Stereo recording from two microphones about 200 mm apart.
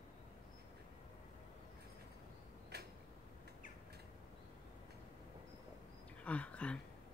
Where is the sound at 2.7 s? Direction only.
55° right (ahead or behind).